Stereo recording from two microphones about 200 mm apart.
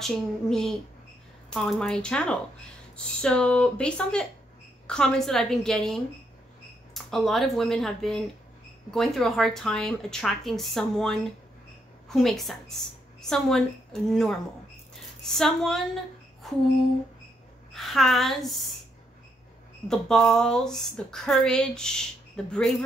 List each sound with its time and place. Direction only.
0.0 s a woman's voice: centre (ahead or behind)
17.7 s a woman's voice: centre (ahead or behind)
19.9 s a woman's voice: centre (ahead or behind)